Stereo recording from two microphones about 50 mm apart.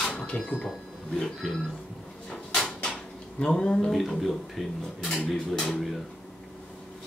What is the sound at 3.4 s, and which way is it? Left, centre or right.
Speech, centre.